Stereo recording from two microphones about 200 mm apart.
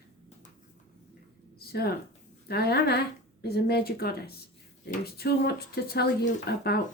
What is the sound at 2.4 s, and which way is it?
Speech, 50° left (ahead or behind).